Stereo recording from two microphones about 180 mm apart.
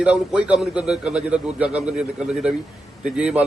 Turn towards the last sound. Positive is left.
turn(degrees=-5)  # may be behind; listen again after turning